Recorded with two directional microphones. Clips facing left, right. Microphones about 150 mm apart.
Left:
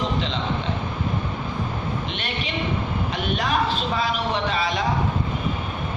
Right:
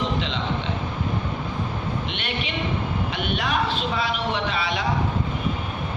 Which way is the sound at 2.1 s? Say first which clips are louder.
Even; 40° left (ahead or behind).